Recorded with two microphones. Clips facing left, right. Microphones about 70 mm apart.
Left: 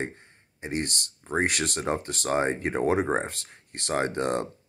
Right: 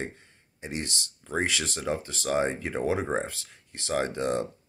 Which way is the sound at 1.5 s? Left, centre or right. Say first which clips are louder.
Left 2 dB; left.